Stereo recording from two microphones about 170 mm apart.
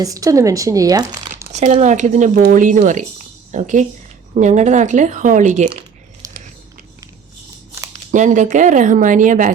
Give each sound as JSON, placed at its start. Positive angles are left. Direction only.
{"t": 0.0, "sound": "speech", "side_deg": -20}
{"t": 1.5, "sound": "speech", "side_deg": -45}
{"t": 6.2, "sound": "biting", "side_deg": -20}
{"t": 8.1, "sound": "speech", "side_deg": -45}